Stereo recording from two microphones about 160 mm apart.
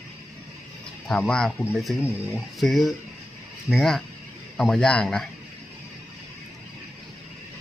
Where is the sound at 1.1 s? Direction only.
5° left (ahead or behind).